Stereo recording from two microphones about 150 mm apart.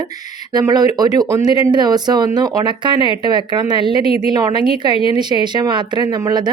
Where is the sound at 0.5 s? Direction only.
25° right (ahead or behind).